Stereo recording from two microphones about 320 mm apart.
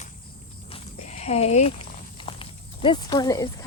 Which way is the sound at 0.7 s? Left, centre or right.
Centre.